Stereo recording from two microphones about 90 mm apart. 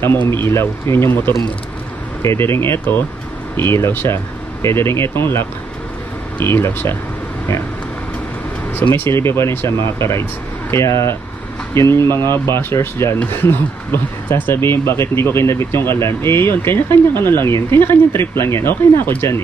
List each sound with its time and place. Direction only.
0.0 s speech: 25° left (ahead or behind)
8.9 s speech: 30° left (ahead or behind)